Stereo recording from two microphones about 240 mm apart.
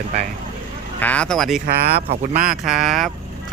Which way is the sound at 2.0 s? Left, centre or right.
Right.